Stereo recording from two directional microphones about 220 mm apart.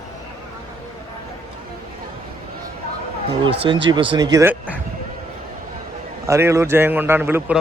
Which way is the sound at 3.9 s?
20° right (ahead or behind).